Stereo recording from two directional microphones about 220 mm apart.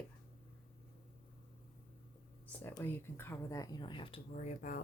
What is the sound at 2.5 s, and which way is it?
Speech, 10° left (ahead or behind).